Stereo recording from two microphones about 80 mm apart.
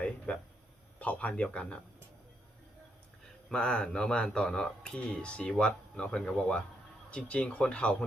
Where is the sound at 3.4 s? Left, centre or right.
Centre.